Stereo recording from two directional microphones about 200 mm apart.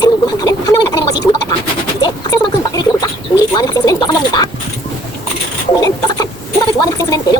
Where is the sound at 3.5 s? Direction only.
20° left (ahead or behind).